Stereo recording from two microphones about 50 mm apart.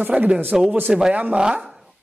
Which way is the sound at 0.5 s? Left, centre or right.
Centre.